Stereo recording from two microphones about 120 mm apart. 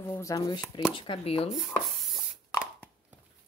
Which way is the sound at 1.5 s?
Centre (ahead or behind).